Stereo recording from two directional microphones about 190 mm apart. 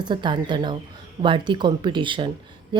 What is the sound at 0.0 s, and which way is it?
A woman's voice, 25° right (ahead or behind).